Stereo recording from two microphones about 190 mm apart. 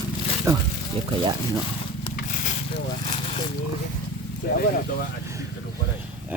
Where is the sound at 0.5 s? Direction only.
15° right (ahead or behind).